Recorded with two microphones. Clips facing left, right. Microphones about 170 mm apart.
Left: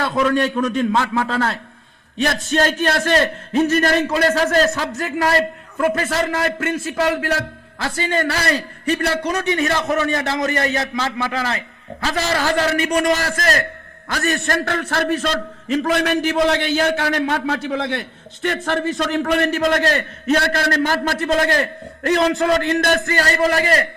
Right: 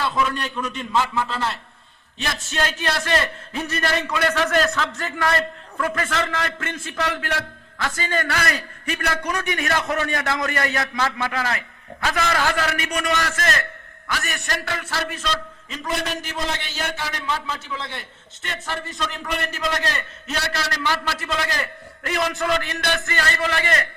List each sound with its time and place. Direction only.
0.0 s a man's voice: 50° left (ahead or behind)
14.3 s a man's voice: 55° left (ahead or behind)
15.7 s a man's voice: 70° left (ahead or behind)
18.4 s a man's voice: 55° left (ahead or behind); by 23.8 s 35° left (ahead or behind)